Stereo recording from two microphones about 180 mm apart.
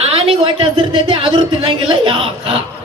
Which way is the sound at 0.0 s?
30° right (ahead or behind).